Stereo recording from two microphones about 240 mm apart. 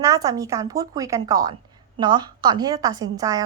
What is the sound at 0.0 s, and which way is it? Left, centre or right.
A woman's voice, centre.